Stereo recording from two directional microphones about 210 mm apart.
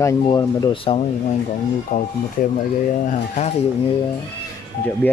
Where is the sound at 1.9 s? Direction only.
40° left (ahead or behind).